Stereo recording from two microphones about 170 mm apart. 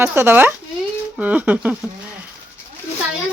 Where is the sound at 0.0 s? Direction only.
15° right (ahead or behind).